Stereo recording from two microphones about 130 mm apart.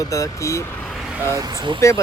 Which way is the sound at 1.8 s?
25° left (ahead or behind).